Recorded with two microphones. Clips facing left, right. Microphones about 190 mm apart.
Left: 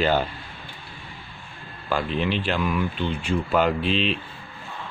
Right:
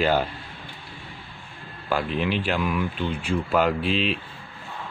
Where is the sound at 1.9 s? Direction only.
5° right (ahead or behind).